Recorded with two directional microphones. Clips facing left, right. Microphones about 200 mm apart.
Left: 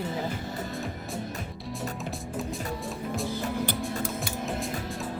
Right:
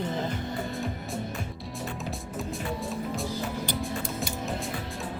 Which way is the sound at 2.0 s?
Centre (ahead or behind).